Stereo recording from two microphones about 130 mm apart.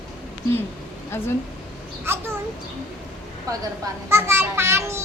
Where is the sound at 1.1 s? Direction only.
20° left (ahead or behind).